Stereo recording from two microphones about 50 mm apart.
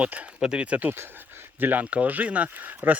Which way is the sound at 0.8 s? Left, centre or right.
Right.